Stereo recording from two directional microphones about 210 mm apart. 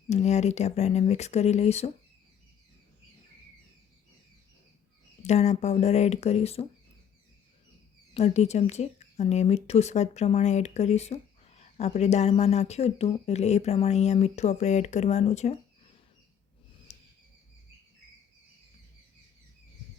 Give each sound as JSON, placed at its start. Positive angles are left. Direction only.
{"t": 0.1, "sound": "speech", "side_deg": 30}
{"t": 5.2, "sound": "speech", "side_deg": 35}
{"t": 8.1, "sound": "speech", "side_deg": 30}
{"t": 16.9, "sound": "a sound", "side_deg": 30}